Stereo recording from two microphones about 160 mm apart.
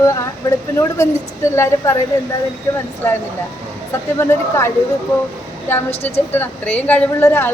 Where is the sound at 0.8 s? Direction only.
15° left (ahead or behind).